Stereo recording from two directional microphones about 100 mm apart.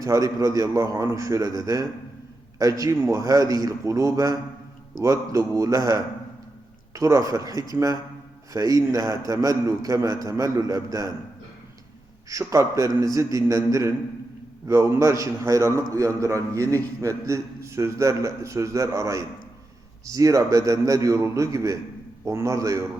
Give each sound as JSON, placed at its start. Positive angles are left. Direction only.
{"t": 0.0, "sound": "a man's voice", "side_deg": -35}
{"t": 12.3, "sound": "a man's voice", "side_deg": -30}